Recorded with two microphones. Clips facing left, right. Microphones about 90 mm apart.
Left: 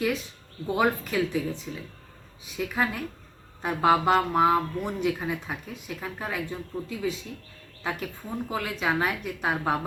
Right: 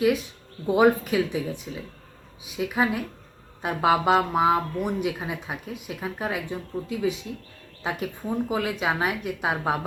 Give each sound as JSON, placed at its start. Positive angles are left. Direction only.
{"t": 0.7, "sound": "speech", "side_deg": -15}